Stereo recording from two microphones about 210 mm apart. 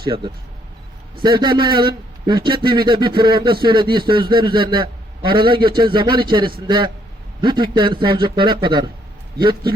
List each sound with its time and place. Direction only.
0.0 s speech: 20° right (ahead or behind)